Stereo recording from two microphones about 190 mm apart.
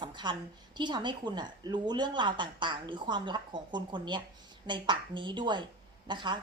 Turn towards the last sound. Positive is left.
turn(degrees=-25)  # may be behind; listen again after turning